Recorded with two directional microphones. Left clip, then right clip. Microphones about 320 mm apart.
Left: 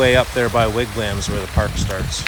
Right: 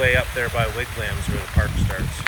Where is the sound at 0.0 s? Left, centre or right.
Centre.